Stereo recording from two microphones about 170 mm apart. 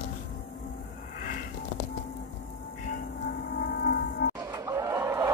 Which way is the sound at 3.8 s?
70° left (ahead or behind).